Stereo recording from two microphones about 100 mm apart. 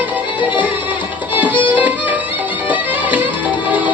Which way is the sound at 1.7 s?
15° right (ahead or behind).